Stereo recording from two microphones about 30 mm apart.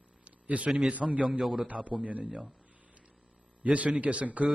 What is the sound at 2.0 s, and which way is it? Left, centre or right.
Speech, right.